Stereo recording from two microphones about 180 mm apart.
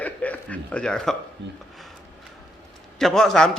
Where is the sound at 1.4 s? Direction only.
80° right.